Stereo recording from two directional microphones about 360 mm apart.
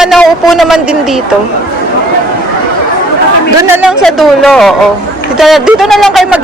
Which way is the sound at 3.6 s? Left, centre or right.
Centre.